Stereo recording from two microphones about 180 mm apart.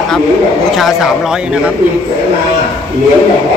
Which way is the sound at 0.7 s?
Centre (ahead or behind).